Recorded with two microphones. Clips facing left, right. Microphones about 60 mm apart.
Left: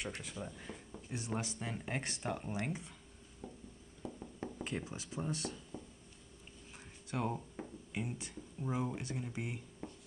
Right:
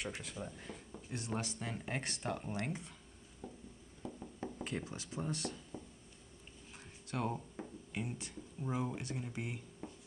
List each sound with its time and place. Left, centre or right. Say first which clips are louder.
0.0 s speech: even; centre
4.0 s a sound: even; centre
7.1 s speech: left 1 dB; centre